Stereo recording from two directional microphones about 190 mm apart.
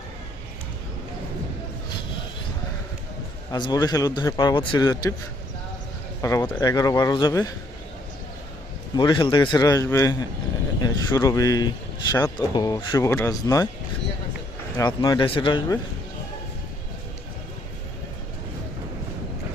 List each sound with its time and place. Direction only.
3.5 s speech: 20° left (ahead or behind)
6.2 s speech: 15° left (ahead or behind)
9.0 s speech: 25° left (ahead or behind)
14.8 s speech: 20° left (ahead or behind)